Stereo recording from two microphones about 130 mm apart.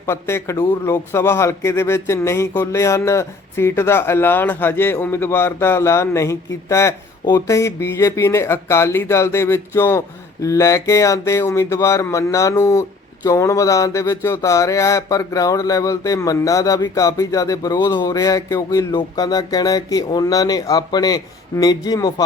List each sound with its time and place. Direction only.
0.0 s speech: 20° left (ahead or behind)